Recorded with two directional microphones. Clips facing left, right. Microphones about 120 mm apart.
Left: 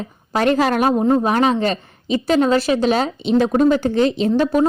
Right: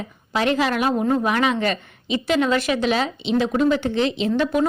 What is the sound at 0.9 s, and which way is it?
A woman's voice, 25° left (ahead or behind).